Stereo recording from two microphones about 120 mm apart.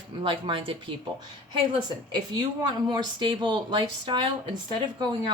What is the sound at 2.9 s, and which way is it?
A woman's voice, 40° right (ahead or behind).